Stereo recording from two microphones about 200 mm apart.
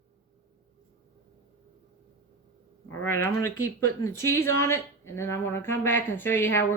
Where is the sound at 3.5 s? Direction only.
90° left.